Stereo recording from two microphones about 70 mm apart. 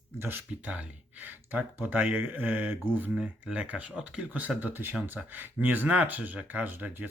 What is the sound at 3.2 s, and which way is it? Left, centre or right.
Speech, centre.